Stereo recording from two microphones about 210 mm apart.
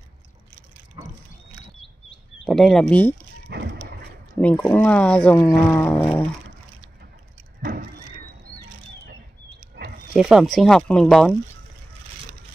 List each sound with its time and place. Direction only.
2.4 s speech: centre (ahead or behind)
3.4 s dog: 50° right (ahead or behind)
4.4 s speech: 5° left (ahead or behind)
9.6 s a sound: 45° right (ahead or behind)
10.1 s speech: centre (ahead or behind)